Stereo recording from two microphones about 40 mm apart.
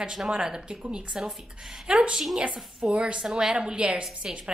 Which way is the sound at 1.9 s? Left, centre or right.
Right.